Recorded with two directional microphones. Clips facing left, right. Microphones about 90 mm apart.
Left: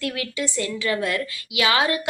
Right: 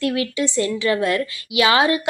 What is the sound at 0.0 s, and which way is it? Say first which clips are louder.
A woman's voice: right 6 dB; 30° right (ahead or behind).